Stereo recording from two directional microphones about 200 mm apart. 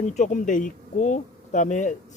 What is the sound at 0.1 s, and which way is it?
Speech, 35° left (ahead or behind).